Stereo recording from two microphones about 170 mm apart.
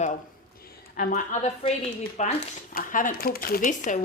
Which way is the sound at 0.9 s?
45° left (ahead or behind).